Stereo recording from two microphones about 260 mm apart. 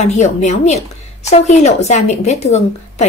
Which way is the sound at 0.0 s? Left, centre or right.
Left.